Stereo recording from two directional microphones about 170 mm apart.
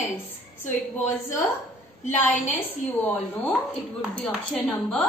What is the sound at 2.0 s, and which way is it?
A woman's voice, 10° left (ahead or behind).